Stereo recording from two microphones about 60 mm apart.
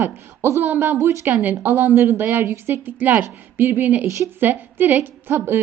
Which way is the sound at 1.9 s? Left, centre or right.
Right.